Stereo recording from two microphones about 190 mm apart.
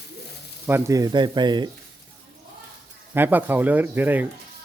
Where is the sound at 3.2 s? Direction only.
10° right (ahead or behind).